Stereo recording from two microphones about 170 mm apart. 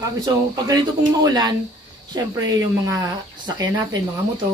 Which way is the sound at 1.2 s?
25° right (ahead or behind).